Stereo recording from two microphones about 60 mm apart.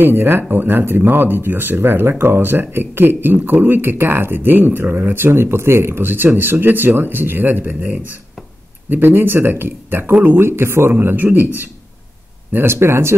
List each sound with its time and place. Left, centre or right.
0.0 s speech: right
10.4 s a man's voice: right
12.5 s a man's voice: right